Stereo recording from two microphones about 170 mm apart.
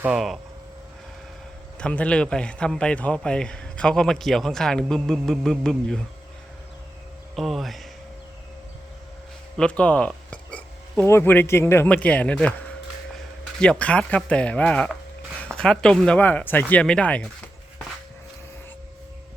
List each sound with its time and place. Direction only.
0.0 s a man's voice: 5° right (ahead or behind)
1.8 s a man's voice: 5° left (ahead or behind)
7.3 s a man's voice: centre (ahead or behind)
9.6 s speech: 5° left (ahead or behind)
13.6 s speech: 5° left (ahead or behind)